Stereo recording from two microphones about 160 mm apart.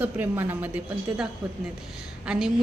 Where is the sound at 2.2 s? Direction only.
5° right (ahead or behind).